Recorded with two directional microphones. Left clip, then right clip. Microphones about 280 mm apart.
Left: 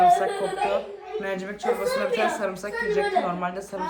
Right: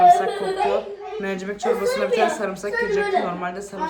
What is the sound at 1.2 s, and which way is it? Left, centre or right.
A woman's voice, centre.